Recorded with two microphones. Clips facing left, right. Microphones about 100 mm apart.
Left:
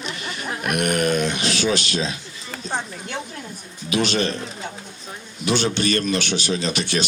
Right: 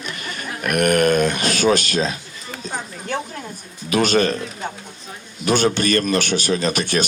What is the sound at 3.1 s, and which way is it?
A man's voice, 45° right (ahead or behind).